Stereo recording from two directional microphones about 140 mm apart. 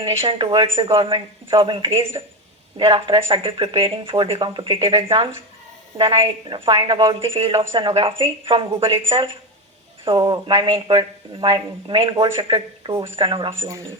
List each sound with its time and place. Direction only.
0.0 s speech: 35° right (ahead or behind)
10.0 s speech: 35° right (ahead or behind)